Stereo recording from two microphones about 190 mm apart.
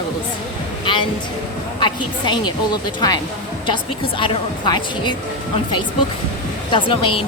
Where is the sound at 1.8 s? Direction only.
25° left (ahead or behind).